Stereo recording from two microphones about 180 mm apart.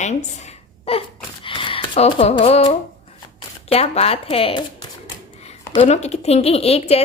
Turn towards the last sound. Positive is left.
turn(degrees=35)  # may be behind; listen again after turning